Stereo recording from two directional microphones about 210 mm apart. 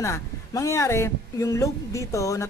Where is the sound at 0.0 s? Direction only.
15° left (ahead or behind).